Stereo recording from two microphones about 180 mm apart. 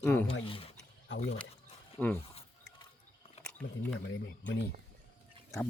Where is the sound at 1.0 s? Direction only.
90° left.